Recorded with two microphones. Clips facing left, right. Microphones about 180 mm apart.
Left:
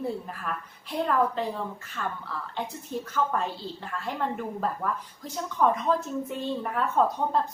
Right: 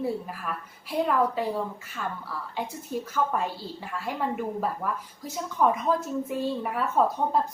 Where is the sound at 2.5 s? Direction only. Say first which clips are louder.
Right 2 dB; 10° right (ahead or behind).